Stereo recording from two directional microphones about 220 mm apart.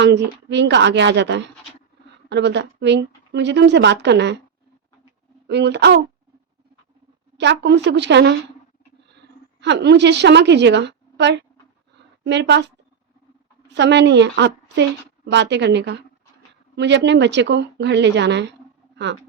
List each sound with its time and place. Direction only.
0.0 s speech: 50° right (ahead or behind)
5.5 s speech: 50° right (ahead or behind)
7.3 s speech: 50° right (ahead or behind)
9.6 s a woman's voice: 50° right (ahead or behind)